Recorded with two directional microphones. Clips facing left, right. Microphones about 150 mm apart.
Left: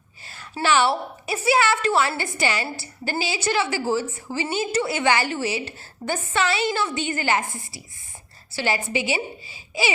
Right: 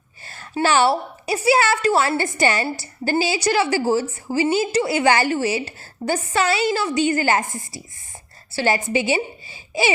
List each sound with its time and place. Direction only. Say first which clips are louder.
0.6 s a woman's voice: right 3 dB; 40° right (ahead or behind)